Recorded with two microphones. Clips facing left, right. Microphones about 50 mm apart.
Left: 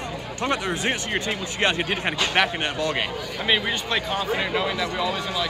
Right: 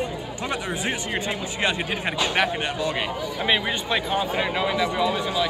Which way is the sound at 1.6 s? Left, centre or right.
Left.